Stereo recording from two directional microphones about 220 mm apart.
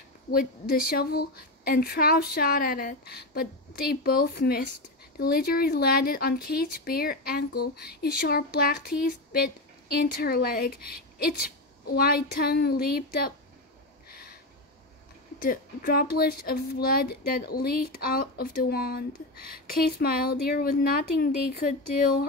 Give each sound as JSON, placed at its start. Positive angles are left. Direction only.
{"t": 0.3, "sound": "speech", "side_deg": 45}
{"t": 14.0, "sound": "a sound", "side_deg": 45}
{"t": 15.3, "sound": "speech", "side_deg": 40}